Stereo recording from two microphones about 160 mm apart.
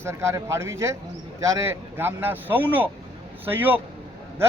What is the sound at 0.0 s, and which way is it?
Speech, 15° right (ahead or behind).